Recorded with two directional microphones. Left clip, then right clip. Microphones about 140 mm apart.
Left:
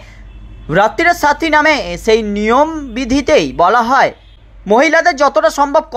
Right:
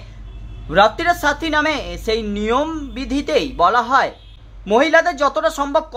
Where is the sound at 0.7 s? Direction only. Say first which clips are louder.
Left 3 dB; 40° left (ahead or behind).